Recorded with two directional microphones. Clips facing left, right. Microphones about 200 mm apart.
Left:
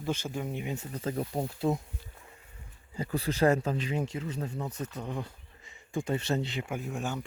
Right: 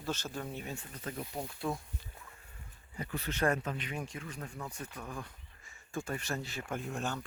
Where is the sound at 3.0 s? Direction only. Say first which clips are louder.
Left 7 dB; 35° left (ahead or behind).